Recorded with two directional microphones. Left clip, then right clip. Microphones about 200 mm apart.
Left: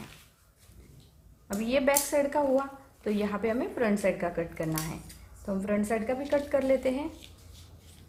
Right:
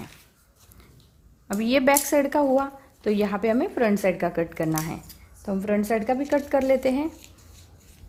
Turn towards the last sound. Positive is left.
turn(degrees=-45)  # may be behind; listen again after turning